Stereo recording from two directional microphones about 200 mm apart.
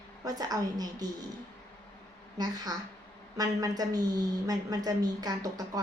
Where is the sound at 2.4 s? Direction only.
20° right (ahead or behind).